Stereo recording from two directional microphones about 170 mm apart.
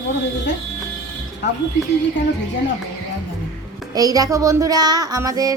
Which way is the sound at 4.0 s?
20° right (ahead or behind).